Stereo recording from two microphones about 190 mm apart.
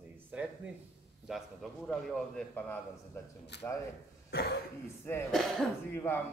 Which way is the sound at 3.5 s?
65° left (ahead or behind).